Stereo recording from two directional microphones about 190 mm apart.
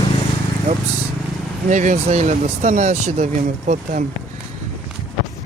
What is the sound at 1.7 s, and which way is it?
Speech, 40° right (ahead or behind).